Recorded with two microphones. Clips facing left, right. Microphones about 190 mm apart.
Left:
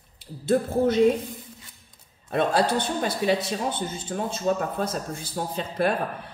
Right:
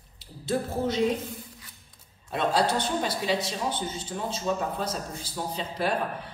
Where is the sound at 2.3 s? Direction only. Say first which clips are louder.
Left 3 dB; 55° left (ahead or behind).